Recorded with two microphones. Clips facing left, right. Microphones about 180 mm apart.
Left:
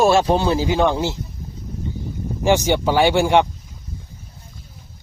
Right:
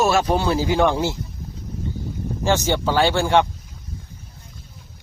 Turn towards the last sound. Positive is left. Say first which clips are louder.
# left 2 dB
turn(degrees=15)  # may be behind; listen again after turning